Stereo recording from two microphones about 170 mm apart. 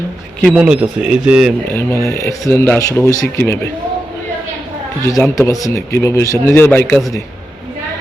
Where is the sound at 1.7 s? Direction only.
10° left (ahead or behind).